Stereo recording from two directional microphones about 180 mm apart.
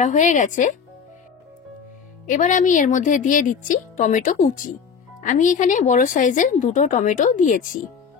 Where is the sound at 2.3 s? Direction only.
45° left (ahead or behind).